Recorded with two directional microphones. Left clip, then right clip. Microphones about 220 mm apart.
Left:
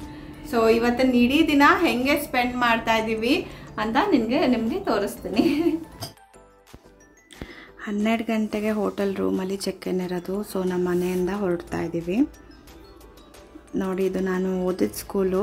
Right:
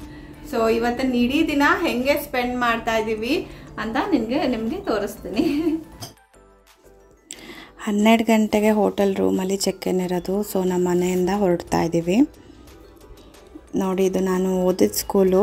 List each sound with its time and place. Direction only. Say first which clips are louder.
0.0 s a woman's voice: left 1 dB; centre (ahead or behind)
7.4 s a woman's voice: right 5 dB; 25° right (ahead or behind)
13.7 s speech: right 4 dB; 15° right (ahead or behind)